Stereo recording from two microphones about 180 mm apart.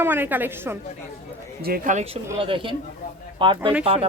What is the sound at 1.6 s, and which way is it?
Speech, 50° right (ahead or behind).